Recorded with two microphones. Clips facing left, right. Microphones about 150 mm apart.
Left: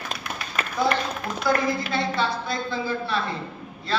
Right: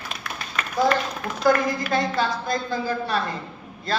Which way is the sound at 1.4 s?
45° right (ahead or behind).